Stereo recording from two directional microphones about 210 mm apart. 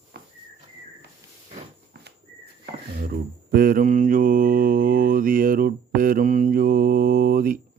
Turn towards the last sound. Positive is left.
turn(degrees=-45)  # may be behind; listen again after turning